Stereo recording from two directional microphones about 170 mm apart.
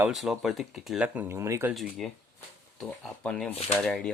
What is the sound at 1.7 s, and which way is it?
Speech, centre (ahead or behind).